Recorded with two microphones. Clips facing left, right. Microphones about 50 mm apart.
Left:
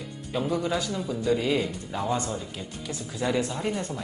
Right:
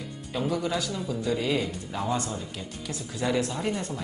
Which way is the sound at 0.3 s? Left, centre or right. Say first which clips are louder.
Left 1 dB; centre.